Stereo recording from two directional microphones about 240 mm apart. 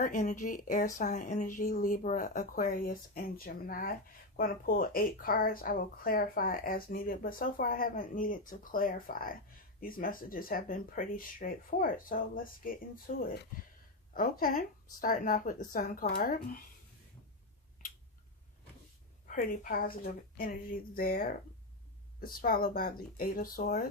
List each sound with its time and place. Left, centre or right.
0.0 s speech: left
19.3 s speech: left